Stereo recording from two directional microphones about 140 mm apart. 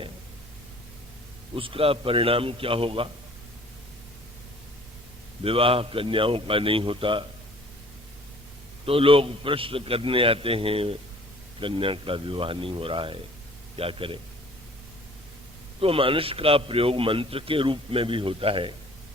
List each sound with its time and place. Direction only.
1.5 s a man's voice: 40° right (ahead or behind)
5.4 s a man's voice: 40° right (ahead or behind)
8.9 s a man's voice: 40° right (ahead or behind)
15.8 s a man's voice: 40° right (ahead or behind)